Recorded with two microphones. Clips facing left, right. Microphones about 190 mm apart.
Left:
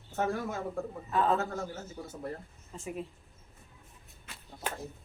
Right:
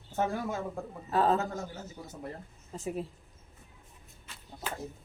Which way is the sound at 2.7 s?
35° right (ahead or behind).